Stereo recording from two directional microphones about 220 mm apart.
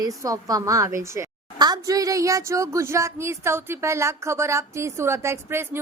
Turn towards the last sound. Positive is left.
turn(degrees=-10)  # may be behind; listen again after turning